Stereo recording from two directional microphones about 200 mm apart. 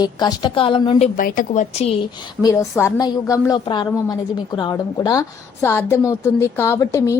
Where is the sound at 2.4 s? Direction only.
15° left (ahead or behind).